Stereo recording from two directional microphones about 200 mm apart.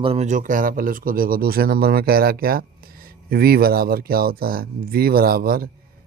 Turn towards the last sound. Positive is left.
turn(degrees=-50)  # may be behind; listen again after turning